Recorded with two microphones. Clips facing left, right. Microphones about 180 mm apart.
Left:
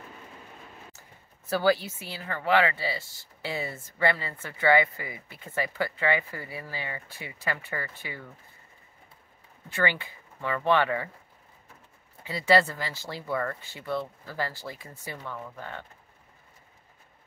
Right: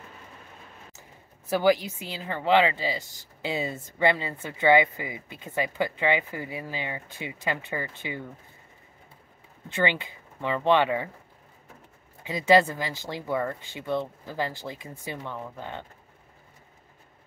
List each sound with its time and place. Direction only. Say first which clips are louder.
1.5 s speech: right 2 dB; 15° right (ahead or behind)
9.7 s speech: right 2 dB; 20° right (ahead or behind)
12.2 s speech: right 3 dB; 15° right (ahead or behind)